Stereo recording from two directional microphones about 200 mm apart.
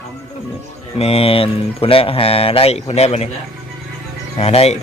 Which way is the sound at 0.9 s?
30° left (ahead or behind).